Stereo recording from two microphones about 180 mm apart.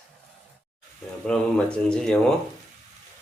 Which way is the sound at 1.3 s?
5° left (ahead or behind).